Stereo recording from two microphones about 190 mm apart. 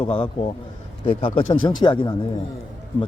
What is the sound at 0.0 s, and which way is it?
Speech, 30° left (ahead or behind).